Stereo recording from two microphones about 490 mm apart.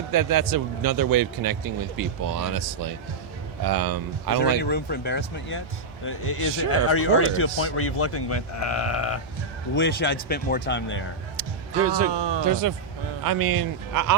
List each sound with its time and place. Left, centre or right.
0.1 s speech: right
4.6 s speech: centre
11.7 s speech: right
12.5 s speech: right